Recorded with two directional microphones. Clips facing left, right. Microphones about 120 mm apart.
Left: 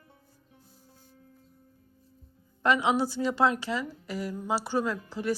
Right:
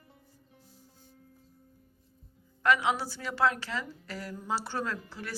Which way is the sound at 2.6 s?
20° left (ahead or behind).